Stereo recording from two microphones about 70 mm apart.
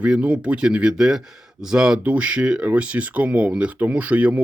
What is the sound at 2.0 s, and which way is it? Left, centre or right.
Speech, centre.